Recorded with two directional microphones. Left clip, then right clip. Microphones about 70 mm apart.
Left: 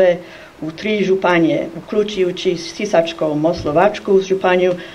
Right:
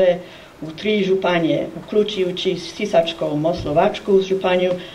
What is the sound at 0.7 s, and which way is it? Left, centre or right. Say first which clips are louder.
Speech: left 2 dB; left.